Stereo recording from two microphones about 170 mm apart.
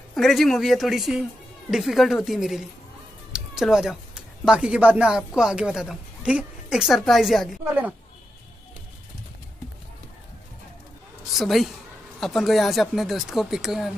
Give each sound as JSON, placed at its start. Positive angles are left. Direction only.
{"t": 0.1, "sound": "speech", "side_deg": 0}
{"t": 11.3, "sound": "speech", "side_deg": 0}